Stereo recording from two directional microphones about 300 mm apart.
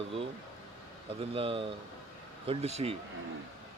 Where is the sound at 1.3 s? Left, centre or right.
Centre.